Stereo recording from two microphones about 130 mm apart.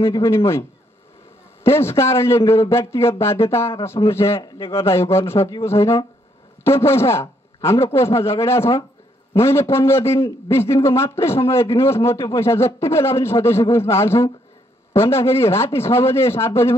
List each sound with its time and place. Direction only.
0.0 s a man's voice: 20° left (ahead or behind)
4.4 s a man's voice: 45° left (ahead or behind)
4.7 s a man's voice: 20° left (ahead or behind)